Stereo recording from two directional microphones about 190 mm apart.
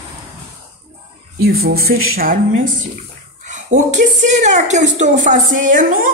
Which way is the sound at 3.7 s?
40° right (ahead or behind).